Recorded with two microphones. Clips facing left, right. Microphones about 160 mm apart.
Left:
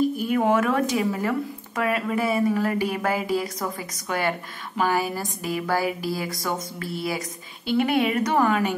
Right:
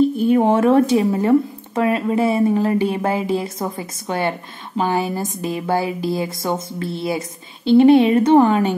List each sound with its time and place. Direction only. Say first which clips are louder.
0.0 s speech: right 7 dB; 30° right (ahead or behind)